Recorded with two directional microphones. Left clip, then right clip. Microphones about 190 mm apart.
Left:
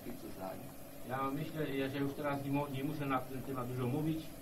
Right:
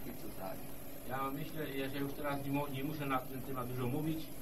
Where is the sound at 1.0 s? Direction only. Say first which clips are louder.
Left 2 dB; 30° right (ahead or behind).